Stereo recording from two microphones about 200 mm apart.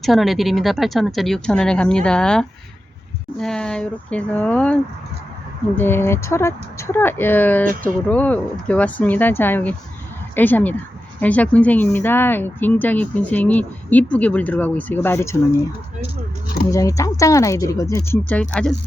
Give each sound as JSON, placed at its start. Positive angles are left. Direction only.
{"t": 0.0, "sound": "speech", "side_deg": 0}
{"t": 16.7, "sound": "speech", "side_deg": 15}